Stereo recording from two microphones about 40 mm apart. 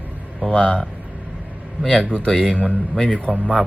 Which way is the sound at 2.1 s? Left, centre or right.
Left.